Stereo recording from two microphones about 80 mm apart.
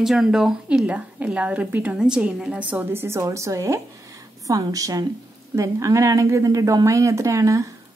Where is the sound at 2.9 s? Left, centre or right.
Right.